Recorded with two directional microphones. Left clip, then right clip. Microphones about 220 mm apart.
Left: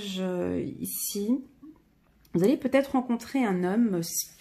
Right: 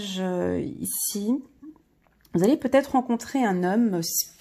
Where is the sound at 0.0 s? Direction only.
35° right (ahead or behind).